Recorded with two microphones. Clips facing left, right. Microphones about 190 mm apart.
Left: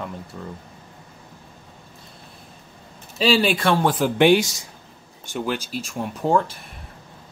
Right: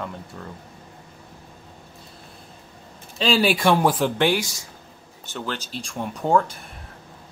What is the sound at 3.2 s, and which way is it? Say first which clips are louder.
Speech: left 1 dB; centre (ahead or behind).